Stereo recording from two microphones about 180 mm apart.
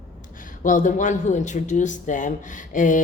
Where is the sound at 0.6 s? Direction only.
45° left (ahead or behind).